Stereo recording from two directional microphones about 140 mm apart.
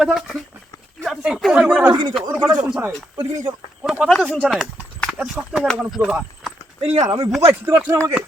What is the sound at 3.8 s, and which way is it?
Speech, 5° right (ahead or behind).